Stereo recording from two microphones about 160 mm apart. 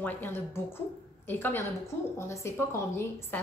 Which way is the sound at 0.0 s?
10° left (ahead or behind).